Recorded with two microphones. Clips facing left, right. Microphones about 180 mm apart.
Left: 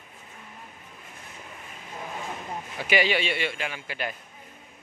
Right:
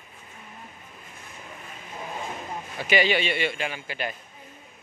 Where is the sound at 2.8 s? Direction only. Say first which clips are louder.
Right 1 dB; 10° left (ahead or behind).